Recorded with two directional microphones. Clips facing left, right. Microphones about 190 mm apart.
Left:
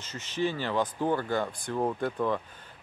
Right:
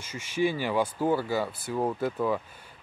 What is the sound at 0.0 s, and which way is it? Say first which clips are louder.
Speech: right 3 dB; 10° right (ahead or behind).